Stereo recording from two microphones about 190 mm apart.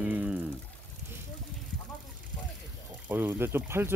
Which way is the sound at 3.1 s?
10° right (ahead or behind).